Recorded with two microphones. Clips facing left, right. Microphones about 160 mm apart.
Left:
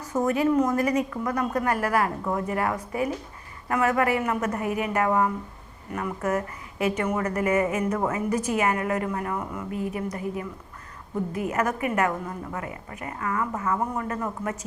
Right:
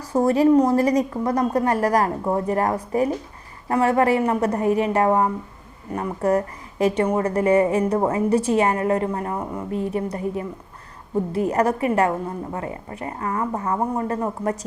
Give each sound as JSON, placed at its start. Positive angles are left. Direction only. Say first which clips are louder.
{"t": 0.0, "sound": "a woman's voice", "louder": "right 6 dB", "side_deg": -35}